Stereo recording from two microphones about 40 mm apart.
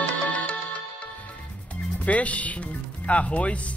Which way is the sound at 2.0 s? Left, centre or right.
Left.